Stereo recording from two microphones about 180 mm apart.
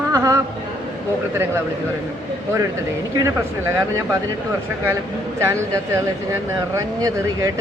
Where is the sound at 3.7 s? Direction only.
15° right (ahead or behind).